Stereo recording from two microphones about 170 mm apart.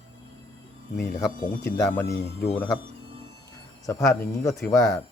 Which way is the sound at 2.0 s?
75° left (ahead or behind).